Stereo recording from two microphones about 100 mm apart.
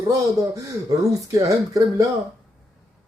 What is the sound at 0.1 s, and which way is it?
Speech, 35° right (ahead or behind).